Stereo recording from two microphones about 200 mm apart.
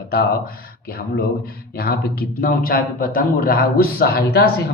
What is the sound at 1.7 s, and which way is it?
Speech, 50° left (ahead or behind).